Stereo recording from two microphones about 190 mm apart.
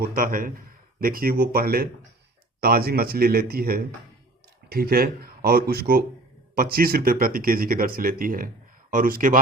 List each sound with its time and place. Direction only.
0.0 s speech: 50° right (ahead or behind)